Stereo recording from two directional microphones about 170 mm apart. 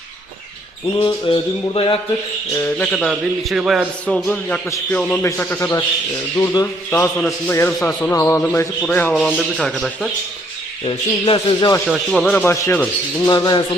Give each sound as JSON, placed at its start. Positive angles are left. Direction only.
{"t": 1.0, "sound": "a sound", "side_deg": 30}
{"t": 2.6, "sound": "speech", "side_deg": 10}
{"t": 4.0, "sound": "speech", "side_deg": 10}
{"t": 7.0, "sound": "speech", "side_deg": 5}
{"t": 7.5, "sound": "speech", "side_deg": 15}
{"t": 10.8, "sound": "a sound", "side_deg": 30}
{"t": 11.9, "sound": "speech", "side_deg": 0}
{"t": 13.2, "sound": "speech", "side_deg": 25}